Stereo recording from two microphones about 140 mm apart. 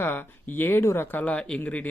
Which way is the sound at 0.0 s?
15° left (ahead or behind).